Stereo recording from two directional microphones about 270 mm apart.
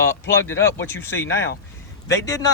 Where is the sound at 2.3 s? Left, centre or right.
Centre.